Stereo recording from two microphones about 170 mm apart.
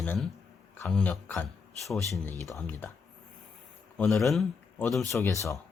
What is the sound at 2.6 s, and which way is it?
Speech, 10° left (ahead or behind).